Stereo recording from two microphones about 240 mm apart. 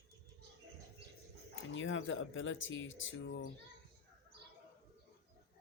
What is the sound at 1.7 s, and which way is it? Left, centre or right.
Speech, left.